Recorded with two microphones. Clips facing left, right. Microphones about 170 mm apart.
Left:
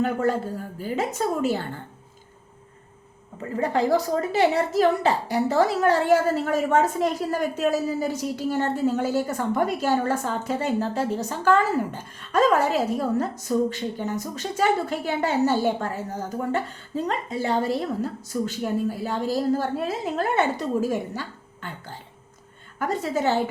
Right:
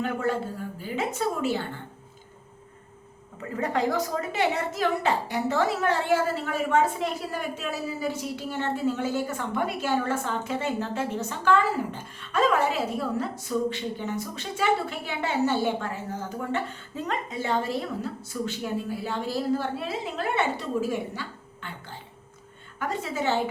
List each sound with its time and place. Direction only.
0.0 s speech: 40° left (ahead or behind)
3.5 s a woman's voice: 30° left (ahead or behind)
22.9 s speech: 40° left (ahead or behind)